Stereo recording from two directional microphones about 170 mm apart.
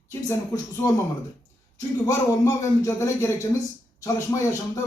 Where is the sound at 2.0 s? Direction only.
20° left (ahead or behind).